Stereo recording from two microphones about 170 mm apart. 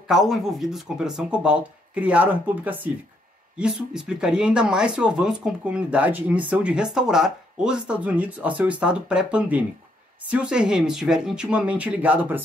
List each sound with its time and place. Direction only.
0.1 s speech: centre (ahead or behind)